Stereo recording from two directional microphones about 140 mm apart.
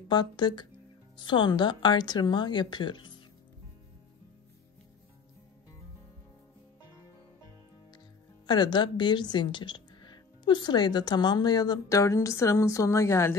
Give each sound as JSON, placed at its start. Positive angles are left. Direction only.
{"t": 0.1, "sound": "speech", "side_deg": 30}
{"t": 8.5, "sound": "a woman's voice", "side_deg": 30}